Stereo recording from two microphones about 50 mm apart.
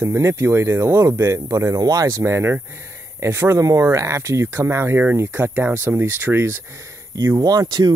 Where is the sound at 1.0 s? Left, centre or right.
Right.